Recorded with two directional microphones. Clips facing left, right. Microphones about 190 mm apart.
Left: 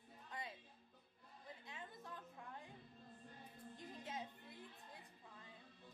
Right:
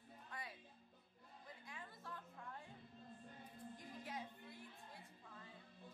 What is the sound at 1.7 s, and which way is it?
Music, 20° left (ahead or behind).